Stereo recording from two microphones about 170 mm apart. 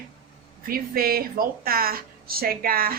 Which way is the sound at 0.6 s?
60° right (ahead or behind).